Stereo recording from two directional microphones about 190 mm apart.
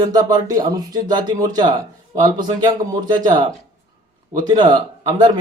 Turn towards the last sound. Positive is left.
turn(degrees=-25)  # may be behind; listen again after turning